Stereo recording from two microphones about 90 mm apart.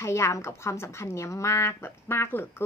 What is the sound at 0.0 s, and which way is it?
A woman's voice, 30° left (ahead or behind).